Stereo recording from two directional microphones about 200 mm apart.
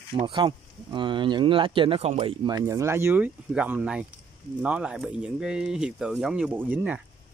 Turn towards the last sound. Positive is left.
turn(degrees=-5)  # may be behind; listen again after turning